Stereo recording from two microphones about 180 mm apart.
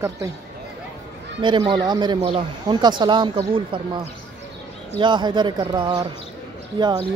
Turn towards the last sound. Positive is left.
turn(degrees=-25)  # may be behind; listen again after turning